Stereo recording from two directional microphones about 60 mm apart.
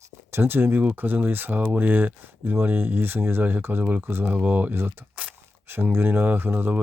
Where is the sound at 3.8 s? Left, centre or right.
Right.